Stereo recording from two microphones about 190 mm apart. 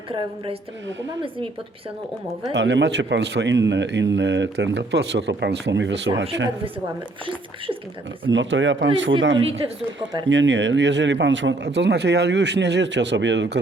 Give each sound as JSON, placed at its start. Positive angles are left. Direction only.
{"t": 0.1, "sound": "a woman's voice", "side_deg": -30}
{"t": 2.5, "sound": "speech", "side_deg": -70}
{"t": 8.3, "sound": "speech", "side_deg": -75}
{"t": 9.4, "sound": "a woman's voice", "side_deg": -30}
{"t": 10.2, "sound": "speech", "side_deg": -75}